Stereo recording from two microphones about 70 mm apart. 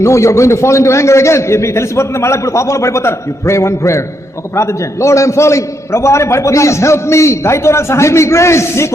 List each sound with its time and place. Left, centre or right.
0.0 s a man's voice: left